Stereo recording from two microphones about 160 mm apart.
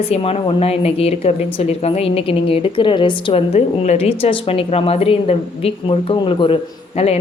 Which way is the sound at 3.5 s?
45° left (ahead or behind).